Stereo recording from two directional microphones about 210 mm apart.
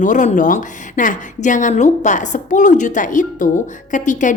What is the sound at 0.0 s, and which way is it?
A woman's voice, 35° left (ahead or behind).